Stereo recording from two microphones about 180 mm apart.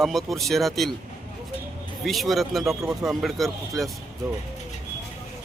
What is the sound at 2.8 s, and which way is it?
Speech, 15° right (ahead or behind).